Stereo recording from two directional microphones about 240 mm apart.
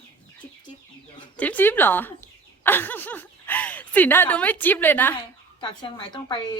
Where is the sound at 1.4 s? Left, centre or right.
Centre.